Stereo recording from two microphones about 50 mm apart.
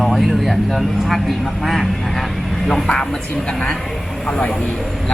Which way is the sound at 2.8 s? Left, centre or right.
Centre.